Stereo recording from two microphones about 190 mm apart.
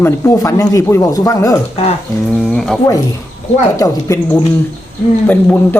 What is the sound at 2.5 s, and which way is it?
Speech, 5° left (ahead or behind).